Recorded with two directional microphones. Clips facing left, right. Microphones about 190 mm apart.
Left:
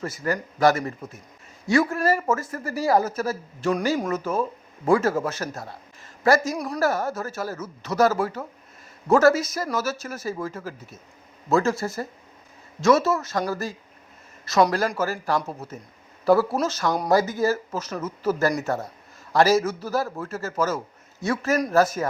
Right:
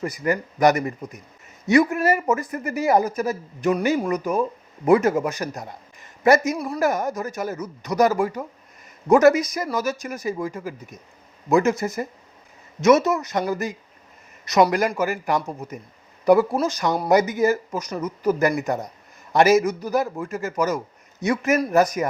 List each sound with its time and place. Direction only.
0.0 s a man's voice: 15° right (ahead or behind)